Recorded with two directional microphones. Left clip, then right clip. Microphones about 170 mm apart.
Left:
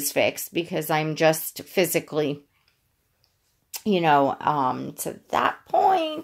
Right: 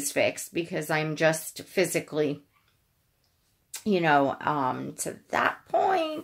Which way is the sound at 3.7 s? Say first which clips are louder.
Left 3 dB; 35° left (ahead or behind).